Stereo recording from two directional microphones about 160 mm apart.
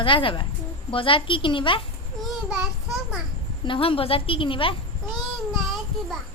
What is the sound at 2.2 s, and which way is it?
Child singing, centre (ahead or behind).